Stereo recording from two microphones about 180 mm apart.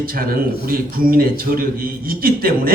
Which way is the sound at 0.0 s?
55° right (ahead or behind).